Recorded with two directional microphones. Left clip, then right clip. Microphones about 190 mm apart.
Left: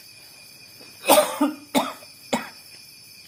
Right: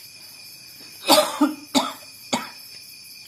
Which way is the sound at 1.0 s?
20° left (ahead or behind).